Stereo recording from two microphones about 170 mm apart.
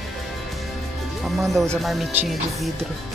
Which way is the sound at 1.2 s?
Centre (ahead or behind).